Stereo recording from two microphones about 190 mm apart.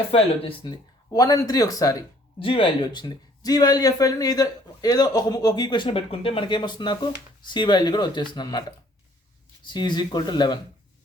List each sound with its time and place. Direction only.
0.1 s speech: 30° left (ahead or behind)
9.6 s speech: 25° left (ahead or behind)